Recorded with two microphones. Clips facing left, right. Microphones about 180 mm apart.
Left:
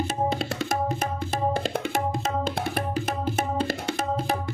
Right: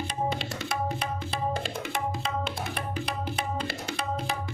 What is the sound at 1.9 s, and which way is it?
Tabla, 45° left (ahead or behind).